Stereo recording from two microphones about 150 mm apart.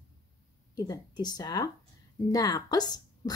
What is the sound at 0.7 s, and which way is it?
A woman's voice, 25° left (ahead or behind).